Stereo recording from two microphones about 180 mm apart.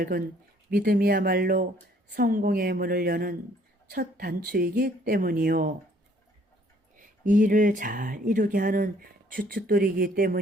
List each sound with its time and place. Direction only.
0.8 s a woman's voice: 55° right (ahead or behind)
6.9 s speech: 45° right (ahead or behind)